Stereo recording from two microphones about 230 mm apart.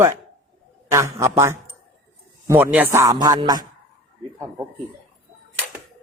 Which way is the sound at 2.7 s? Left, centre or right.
Centre.